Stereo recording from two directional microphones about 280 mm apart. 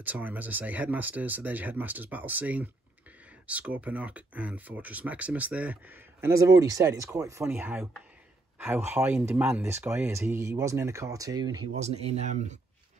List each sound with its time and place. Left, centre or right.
0.0 s speech: centre; by 12.5 s right